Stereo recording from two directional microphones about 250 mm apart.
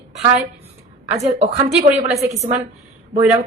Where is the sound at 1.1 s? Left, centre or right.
Right.